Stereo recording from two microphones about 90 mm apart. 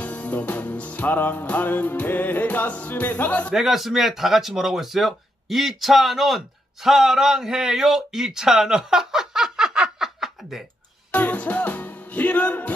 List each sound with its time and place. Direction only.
0.0 s music: 15° left (ahead or behind)
3.5 s speech: centre (ahead or behind)
11.1 s music: 15° left (ahead or behind)